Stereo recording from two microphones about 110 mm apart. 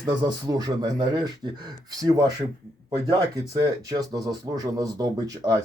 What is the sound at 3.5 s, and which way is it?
Speech, 35° right (ahead or behind).